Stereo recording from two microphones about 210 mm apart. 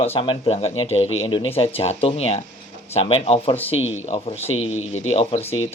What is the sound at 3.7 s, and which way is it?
Speech, 70° left (ahead or behind).